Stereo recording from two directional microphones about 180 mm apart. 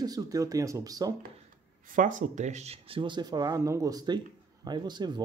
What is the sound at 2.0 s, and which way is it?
Speech, 45° right (ahead or behind).